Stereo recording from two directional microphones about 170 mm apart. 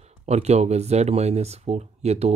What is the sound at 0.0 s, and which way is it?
Speech, 40° right (ahead or behind).